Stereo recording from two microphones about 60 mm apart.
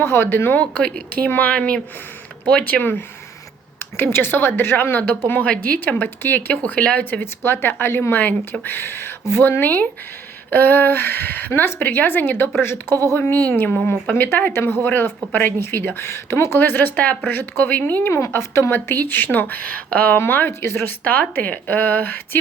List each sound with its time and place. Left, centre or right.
0.0 s speech: left
0.6 s speech: left
3.8 s speech: left
13.3 s speech: left
18.1 s speech: left
18.7 s speech: left
20.1 s speech: left
21.0 s speech: left